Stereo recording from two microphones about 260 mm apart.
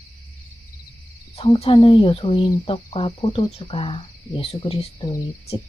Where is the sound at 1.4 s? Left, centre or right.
Left.